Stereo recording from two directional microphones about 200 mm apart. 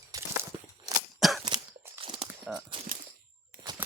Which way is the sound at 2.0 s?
25° right (ahead or behind).